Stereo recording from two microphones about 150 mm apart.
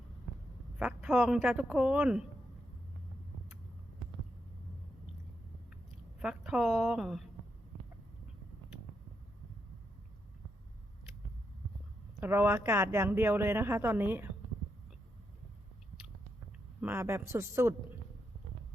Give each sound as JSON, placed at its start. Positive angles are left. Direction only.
{"t": 0.8, "sound": "speech", "side_deg": 0}
{"t": 6.1, "sound": "speech", "side_deg": -5}
{"t": 12.2, "sound": "speech", "side_deg": -10}
{"t": 16.8, "sound": "speech", "side_deg": -15}